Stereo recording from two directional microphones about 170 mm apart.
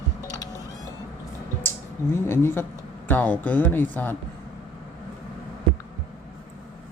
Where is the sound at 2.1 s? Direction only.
15° left (ahead or behind).